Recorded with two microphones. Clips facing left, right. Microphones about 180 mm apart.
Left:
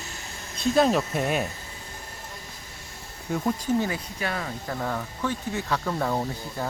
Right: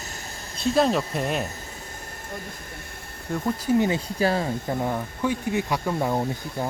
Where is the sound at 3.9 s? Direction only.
30° right (ahead or behind).